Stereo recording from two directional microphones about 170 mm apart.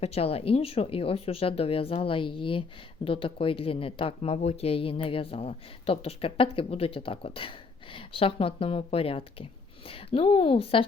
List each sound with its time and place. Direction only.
0.0 s speech: 35° left (ahead or behind)